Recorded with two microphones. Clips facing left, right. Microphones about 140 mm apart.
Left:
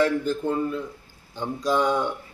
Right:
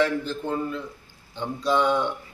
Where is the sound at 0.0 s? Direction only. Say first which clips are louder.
Left 2 dB; 45° left (ahead or behind).